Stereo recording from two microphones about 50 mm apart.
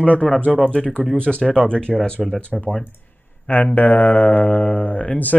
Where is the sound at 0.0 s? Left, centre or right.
Left.